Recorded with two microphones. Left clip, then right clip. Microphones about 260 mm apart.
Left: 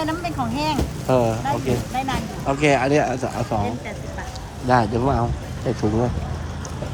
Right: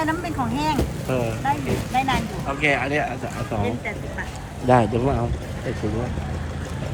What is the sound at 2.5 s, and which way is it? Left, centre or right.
Speech, centre.